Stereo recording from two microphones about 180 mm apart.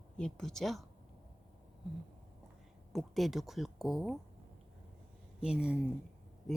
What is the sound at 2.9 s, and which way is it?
Speech, centre (ahead or behind).